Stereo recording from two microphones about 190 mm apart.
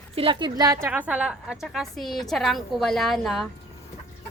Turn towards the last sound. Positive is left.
turn(degrees=0)  # may be behind; listen again after turning